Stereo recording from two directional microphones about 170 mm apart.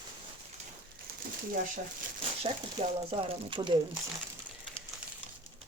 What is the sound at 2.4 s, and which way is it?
Speech, 35° right (ahead or behind).